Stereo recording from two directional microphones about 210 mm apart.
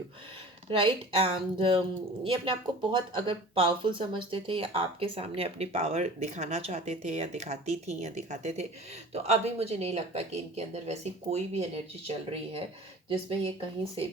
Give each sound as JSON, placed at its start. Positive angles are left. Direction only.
{"t": 0.7, "sound": "a woman's voice", "side_deg": -25}